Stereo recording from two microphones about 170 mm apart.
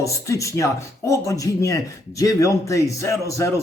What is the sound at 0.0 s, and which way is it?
A man's voice, 15° left (ahead or behind).